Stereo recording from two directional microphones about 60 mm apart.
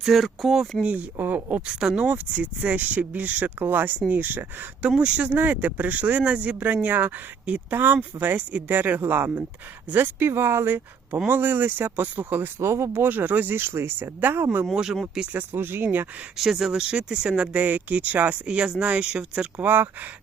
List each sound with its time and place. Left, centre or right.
0.0 s speech: centre
0.9 s speech: right
4.9 s speech: centre
5.3 s speech: right
11.3 s speech: right
12.5 s speech: right
13.0 s speech: right
16.4 s speech: centre
19.6 s speech: right